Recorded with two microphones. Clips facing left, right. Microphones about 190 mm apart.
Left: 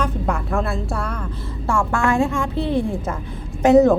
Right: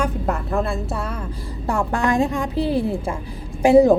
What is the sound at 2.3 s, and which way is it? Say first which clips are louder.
Speech: right 1 dB; 35° right (ahead or behind).